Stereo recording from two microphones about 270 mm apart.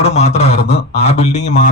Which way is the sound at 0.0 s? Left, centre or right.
Left.